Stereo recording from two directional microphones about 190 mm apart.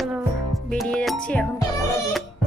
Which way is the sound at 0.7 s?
5° left (ahead or behind).